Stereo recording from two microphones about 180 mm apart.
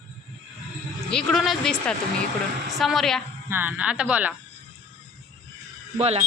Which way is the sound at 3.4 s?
10° right (ahead or behind).